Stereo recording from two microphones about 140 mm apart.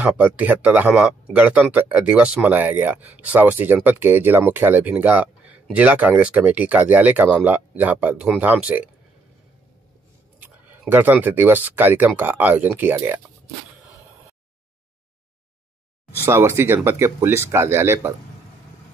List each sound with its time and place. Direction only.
0.0 s speech: 10° right (ahead or behind)
10.4 s speech: 10° right (ahead or behind)
16.3 s speech: 20° right (ahead or behind)